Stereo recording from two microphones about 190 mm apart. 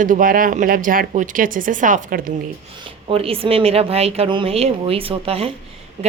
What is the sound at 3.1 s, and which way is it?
A woman's voice, 30° right (ahead or behind).